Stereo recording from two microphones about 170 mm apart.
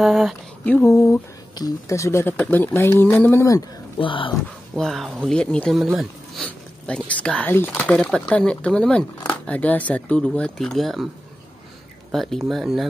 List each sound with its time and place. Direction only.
0.0 s speech: centre (ahead or behind)
0.7 s speech: 15° left (ahead or behind)
4.0 s speech: 30° left (ahead or behind)
4.7 s speech: centre (ahead or behind)
12.1 s speech: centre (ahead or behind)